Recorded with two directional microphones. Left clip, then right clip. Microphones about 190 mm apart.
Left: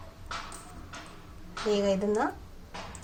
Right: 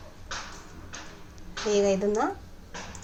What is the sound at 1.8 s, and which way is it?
Speech, centre (ahead or behind).